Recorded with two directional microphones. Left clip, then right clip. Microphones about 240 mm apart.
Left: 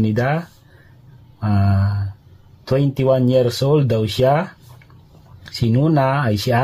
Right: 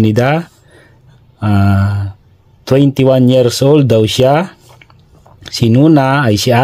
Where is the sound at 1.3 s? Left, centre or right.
Right.